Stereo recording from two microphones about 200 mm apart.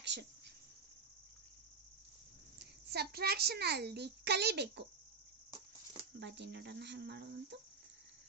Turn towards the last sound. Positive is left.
turn(degrees=-60)  # may be behind; listen again after turning